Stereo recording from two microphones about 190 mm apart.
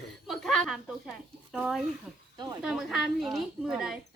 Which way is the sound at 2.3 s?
20° right (ahead or behind).